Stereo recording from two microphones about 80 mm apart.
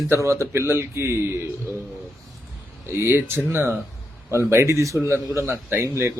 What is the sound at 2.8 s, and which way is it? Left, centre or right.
A man's voice, right.